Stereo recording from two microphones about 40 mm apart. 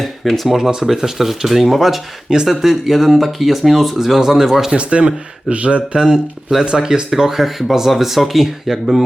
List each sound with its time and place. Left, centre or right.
0.0 s speech: centre
0.5 s speech: centre
4.7 s speech: right
6.0 s speech: centre